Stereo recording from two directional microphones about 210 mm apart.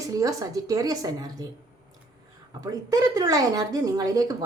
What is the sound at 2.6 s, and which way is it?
A woman's voice, 15° right (ahead or behind).